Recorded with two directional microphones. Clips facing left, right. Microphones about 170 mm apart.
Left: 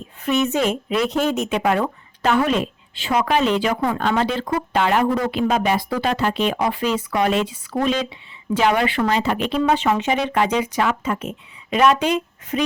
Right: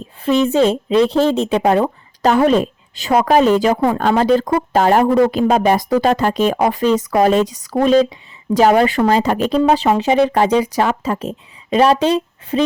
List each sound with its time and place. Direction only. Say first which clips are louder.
0.2 s speech: right 6 dB; 30° right (ahead or behind)